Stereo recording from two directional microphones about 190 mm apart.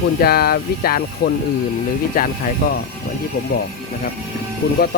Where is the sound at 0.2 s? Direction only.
55° left (ahead or behind).